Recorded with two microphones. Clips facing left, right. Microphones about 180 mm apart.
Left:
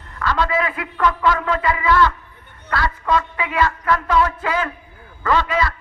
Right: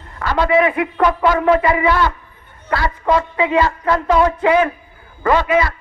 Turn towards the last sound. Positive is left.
turn(degrees=-20)  # may be behind; listen again after turning